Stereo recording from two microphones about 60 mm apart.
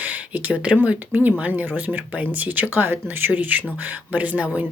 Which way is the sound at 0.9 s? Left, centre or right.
Right.